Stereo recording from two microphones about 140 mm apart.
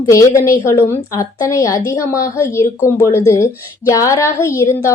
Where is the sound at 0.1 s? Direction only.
20° left (ahead or behind).